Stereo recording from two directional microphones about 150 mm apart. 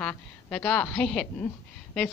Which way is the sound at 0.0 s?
10° left (ahead or behind).